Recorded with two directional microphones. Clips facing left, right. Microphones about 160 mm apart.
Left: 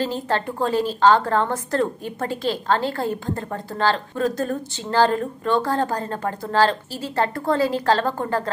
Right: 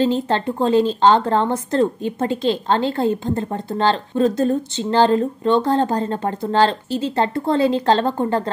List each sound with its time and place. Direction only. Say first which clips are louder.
0.0 s a woman's voice: right 5 dB; 25° right (ahead or behind)